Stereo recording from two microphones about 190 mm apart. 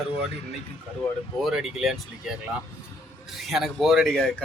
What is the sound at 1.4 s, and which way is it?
Speech, centre (ahead or behind).